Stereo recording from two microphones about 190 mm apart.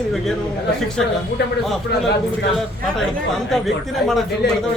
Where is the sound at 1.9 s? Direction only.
60° left (ahead or behind).